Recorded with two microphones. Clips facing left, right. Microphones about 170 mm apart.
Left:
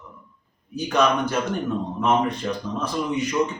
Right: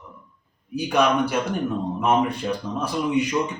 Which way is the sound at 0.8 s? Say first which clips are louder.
Right 1 dB; 10° right (ahead or behind).